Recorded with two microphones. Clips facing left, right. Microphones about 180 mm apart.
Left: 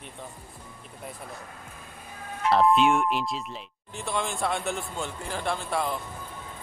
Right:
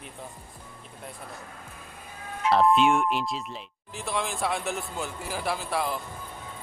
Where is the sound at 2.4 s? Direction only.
Centre (ahead or behind).